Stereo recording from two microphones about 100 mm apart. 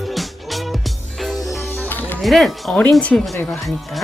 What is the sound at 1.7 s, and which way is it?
Music, 20° left (ahead or behind).